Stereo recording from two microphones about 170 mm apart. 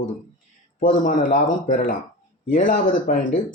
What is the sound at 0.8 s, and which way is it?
Speech, 50° left (ahead or behind).